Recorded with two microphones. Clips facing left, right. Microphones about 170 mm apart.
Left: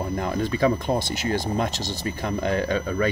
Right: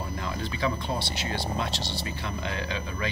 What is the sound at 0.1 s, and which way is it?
Speech, 45° left (ahead or behind).